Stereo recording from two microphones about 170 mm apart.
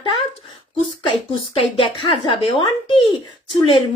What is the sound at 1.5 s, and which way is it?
A woman's voice, 30° left (ahead or behind).